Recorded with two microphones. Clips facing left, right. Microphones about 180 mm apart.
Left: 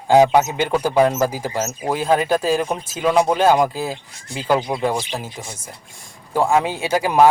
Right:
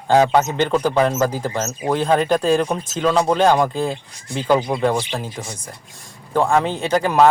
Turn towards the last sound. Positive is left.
turn(degrees=10)  # may be behind; listen again after turning